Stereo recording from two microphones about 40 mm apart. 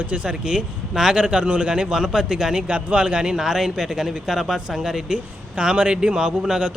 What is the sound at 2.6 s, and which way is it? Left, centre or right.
Speech, right.